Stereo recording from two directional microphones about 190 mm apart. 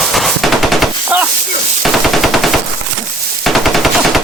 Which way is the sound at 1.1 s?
10° right (ahead or behind).